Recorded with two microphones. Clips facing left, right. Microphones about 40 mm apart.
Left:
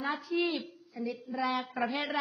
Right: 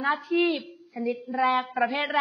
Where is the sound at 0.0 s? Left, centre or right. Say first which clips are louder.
Right 7 dB; right.